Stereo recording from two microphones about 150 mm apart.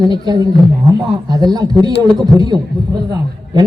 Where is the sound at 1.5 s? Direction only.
30° right (ahead or behind).